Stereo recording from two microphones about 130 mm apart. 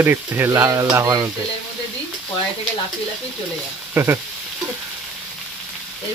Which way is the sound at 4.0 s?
15° right (ahead or behind).